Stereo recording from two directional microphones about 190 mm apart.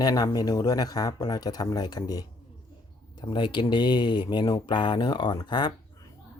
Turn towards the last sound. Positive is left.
turn(degrees=20)  # may be behind; listen again after turning